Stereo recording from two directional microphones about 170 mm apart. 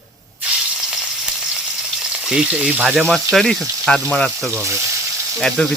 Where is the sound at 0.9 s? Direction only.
5° right (ahead or behind).